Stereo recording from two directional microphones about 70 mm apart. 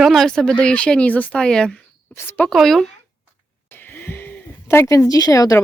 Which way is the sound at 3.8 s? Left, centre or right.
Left.